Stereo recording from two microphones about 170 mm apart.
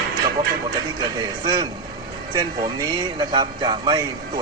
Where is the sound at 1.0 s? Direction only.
25° right (ahead or behind).